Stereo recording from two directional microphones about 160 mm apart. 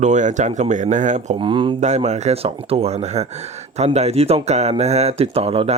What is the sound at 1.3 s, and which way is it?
Speech, 30° right (ahead or behind).